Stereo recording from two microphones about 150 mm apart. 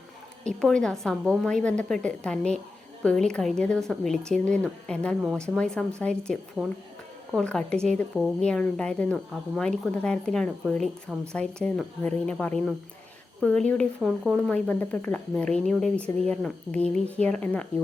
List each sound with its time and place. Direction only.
0.4 s a woman's voice: 5° left (ahead or behind)
7.4 s a woman's voice: 5° left (ahead or behind)